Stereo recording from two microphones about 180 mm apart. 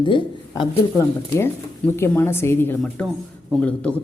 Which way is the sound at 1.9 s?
15° left (ahead or behind).